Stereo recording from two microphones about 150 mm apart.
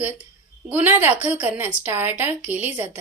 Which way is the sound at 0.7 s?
10° right (ahead or behind).